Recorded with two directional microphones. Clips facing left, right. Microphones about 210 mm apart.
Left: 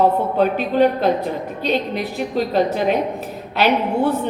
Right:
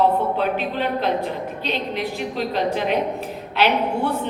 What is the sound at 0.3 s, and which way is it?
A woman's voice, 45° left (ahead or behind).